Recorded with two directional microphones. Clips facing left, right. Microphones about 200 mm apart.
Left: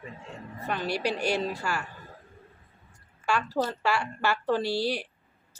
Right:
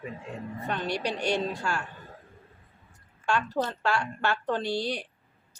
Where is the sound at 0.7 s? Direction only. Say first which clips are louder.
Left 2 dB; 5° left (ahead or behind).